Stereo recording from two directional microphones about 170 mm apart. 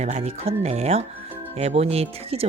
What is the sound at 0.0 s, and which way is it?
A woman's voice, 40° right (ahead or behind).